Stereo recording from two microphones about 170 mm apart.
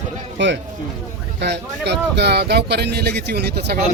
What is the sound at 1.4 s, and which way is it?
Speech, 90° right.